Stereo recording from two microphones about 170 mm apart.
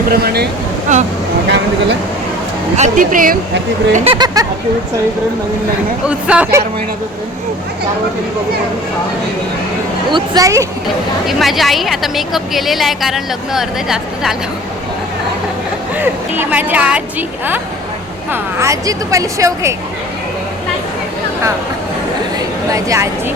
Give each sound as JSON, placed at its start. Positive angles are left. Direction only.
{"t": 0.1, "sound": "speech", "side_deg": -70}
{"t": 0.9, "sound": "speech", "side_deg": -45}
{"t": 1.5, "sound": "speech", "side_deg": -90}
{"t": 2.7, "sound": "a woman's voice", "side_deg": -50}
{"t": 3.9, "sound": "a woman's voice", "side_deg": -30}
{"t": 6.1, "sound": "speech", "side_deg": -5}
{"t": 10.1, "sound": "a woman's voice", "side_deg": -25}
{"t": 11.3, "sound": "a woman's voice", "side_deg": 0}
{"t": 16.0, "sound": "a woman's voice", "side_deg": -10}
{"t": 22.4, "sound": "a sound", "side_deg": -20}